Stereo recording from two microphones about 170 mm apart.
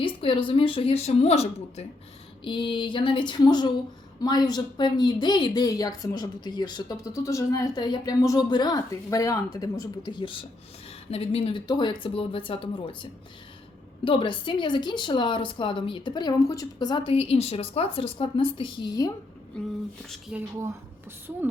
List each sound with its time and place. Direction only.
0.0 s a woman's voice: 30° left (ahead or behind)
19.6 s speech: 5° left (ahead or behind)